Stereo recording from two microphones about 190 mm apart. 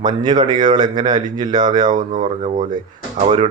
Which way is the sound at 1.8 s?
45° right (ahead or behind).